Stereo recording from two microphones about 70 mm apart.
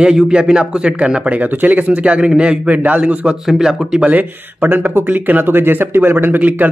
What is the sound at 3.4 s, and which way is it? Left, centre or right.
Speech, centre.